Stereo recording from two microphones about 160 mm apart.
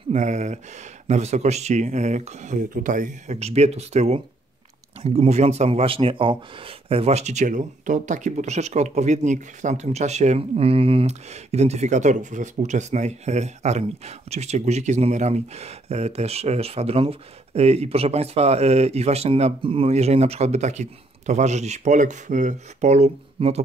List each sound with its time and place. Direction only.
0.1 s speech: 45° right (ahead or behind)